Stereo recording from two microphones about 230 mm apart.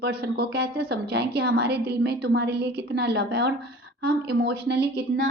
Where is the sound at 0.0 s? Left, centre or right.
Right.